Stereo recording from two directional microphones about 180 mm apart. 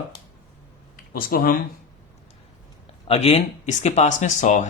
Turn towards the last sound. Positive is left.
turn(degrees=40)  # may be behind; listen again after turning